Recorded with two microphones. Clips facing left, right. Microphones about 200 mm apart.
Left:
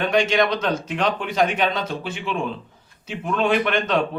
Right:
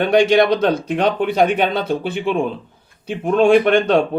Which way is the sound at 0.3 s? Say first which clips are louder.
Right 6 dB; 35° right (ahead or behind).